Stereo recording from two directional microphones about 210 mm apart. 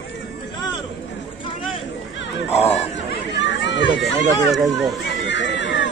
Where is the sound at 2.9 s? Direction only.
60° left (ahead or behind).